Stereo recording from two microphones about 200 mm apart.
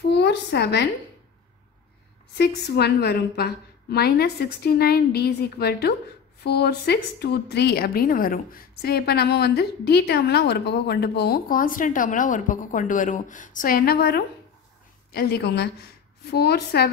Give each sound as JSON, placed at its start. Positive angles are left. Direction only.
{"t": 0.1, "sound": "a woman's voice", "side_deg": 55}
{"t": 2.3, "sound": "a woman's voice", "side_deg": 55}